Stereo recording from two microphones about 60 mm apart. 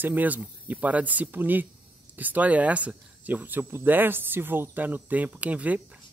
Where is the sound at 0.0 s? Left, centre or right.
Right.